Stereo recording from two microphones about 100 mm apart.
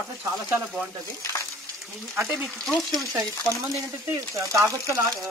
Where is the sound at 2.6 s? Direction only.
5° left (ahead or behind).